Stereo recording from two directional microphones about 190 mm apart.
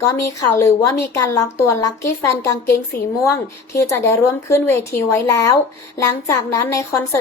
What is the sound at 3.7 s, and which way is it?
A woman's voice, 15° left (ahead or behind).